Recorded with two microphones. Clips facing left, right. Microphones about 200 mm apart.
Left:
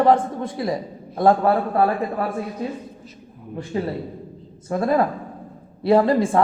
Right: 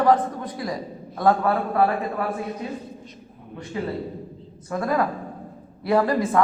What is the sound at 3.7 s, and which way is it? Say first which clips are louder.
A man's voice: left 2 dB; 35° left (ahead or behind).